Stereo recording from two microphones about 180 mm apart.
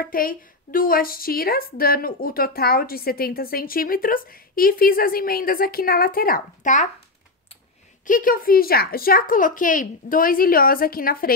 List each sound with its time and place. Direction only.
0.0 s a woman's voice: 55° left (ahead or behind)
8.0 s speech: 50° left (ahead or behind)